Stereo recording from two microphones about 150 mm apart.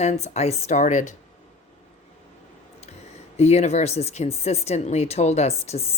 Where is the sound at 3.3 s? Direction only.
45° left (ahead or behind).